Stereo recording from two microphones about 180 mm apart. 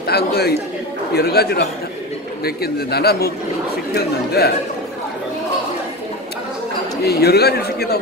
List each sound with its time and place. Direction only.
0.0 s speech: 60° left (ahead or behind)
7.0 s speech: 60° left (ahead or behind)